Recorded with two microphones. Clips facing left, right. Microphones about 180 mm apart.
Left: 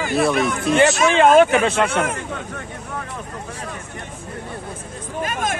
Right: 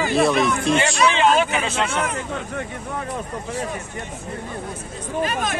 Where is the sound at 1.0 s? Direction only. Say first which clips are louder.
Left 5 dB; 50° left (ahead or behind).